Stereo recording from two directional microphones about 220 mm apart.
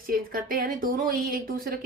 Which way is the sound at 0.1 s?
40° right (ahead or behind).